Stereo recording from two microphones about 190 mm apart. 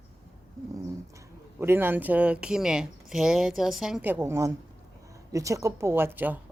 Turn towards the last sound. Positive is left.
turn(degrees=-10)  # may be behind; listen again after turning